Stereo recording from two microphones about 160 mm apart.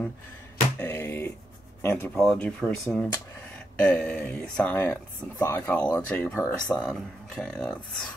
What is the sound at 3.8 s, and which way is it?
Speech, 5° left (ahead or behind).